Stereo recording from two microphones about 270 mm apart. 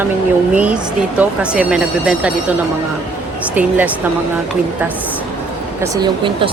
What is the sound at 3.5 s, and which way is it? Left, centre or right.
Speech, centre.